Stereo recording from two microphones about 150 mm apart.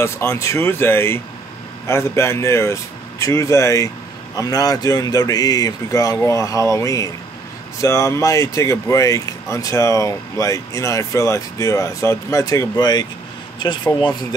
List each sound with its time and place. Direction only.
0.0 s speech: 20° left (ahead or behind)